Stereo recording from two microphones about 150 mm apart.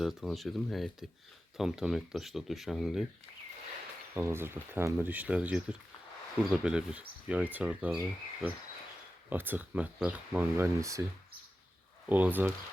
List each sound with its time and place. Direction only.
0.0 s speech: centre (ahead or behind)
4.1 s speech: 15° right (ahead or behind)
10.8 s speech: 20° right (ahead or behind)
12.0 s speech: 10° right (ahead or behind)